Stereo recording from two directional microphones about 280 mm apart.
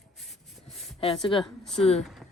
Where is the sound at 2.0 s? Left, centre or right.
Centre.